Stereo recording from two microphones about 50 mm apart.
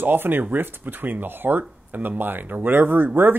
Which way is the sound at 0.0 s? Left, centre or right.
Right.